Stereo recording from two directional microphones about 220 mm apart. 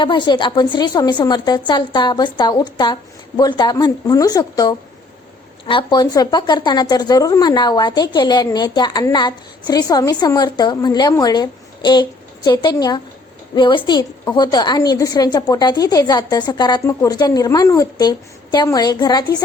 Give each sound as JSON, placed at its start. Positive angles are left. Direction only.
{"t": 0.0, "sound": "a woman's voice", "side_deg": 20}